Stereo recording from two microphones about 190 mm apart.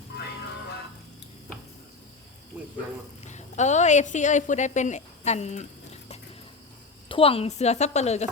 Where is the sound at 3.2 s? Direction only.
40° left (ahead or behind).